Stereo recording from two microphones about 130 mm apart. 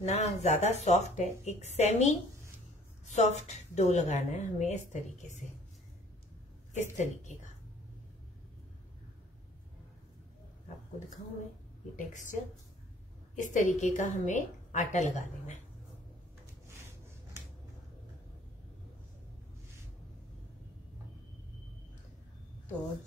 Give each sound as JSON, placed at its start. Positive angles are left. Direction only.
{"t": 0.0, "sound": "speech", "side_deg": 60}
{"t": 6.7, "sound": "a woman's voice", "side_deg": 65}
{"t": 12.1, "sound": "a woman's voice", "side_deg": 75}